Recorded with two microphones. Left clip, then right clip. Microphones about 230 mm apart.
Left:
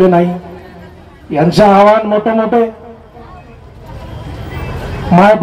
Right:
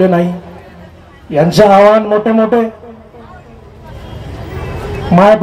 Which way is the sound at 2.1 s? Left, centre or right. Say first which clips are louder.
Right 1 dB; right.